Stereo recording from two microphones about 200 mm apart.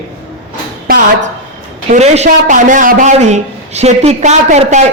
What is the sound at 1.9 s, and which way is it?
A man's voice, 35° right (ahead or behind).